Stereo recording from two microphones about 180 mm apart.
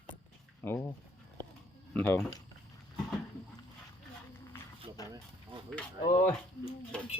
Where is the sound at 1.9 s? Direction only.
10° left (ahead or behind).